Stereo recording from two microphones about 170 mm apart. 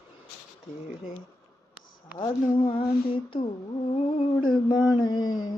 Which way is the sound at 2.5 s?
25° left (ahead or behind).